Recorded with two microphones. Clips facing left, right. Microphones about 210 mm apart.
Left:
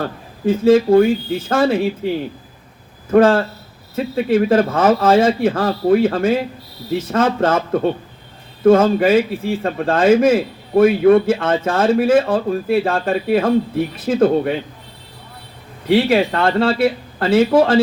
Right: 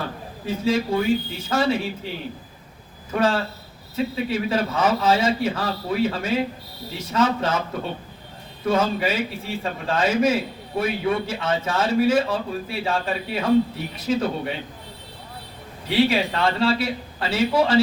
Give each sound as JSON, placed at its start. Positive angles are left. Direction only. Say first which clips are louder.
{"t": 0.4, "sound": "a man's voice", "louder": "left 10 dB", "side_deg": 50}
{"t": 3.1, "sound": "a man's voice", "louder": "left 10 dB", "side_deg": 50}
{"t": 15.9, "sound": "a man's voice", "louder": "left 6 dB", "side_deg": 55}